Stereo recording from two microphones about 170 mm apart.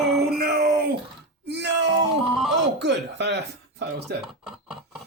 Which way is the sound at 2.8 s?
90° right.